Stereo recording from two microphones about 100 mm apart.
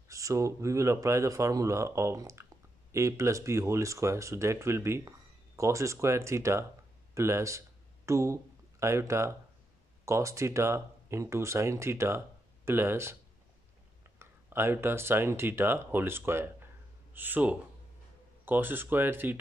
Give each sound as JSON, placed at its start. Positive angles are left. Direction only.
{"t": 0.1, "sound": "speech", "side_deg": -30}
{"t": 14.1, "sound": "speech", "side_deg": -25}